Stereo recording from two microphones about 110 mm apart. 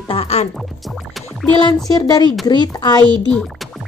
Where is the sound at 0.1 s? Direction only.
65° left (ahead or behind).